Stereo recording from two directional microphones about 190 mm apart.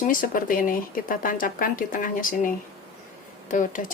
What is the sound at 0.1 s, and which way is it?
Speech, 45° left (ahead or behind).